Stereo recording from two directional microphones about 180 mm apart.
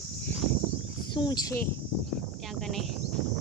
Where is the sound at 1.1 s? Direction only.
25° left (ahead or behind).